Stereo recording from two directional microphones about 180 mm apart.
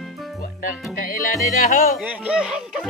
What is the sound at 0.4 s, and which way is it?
Music, 50° left (ahead or behind).